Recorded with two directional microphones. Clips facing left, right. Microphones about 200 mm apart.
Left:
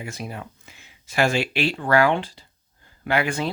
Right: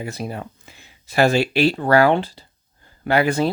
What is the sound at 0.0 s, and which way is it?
Speech, 35° right (ahead or behind).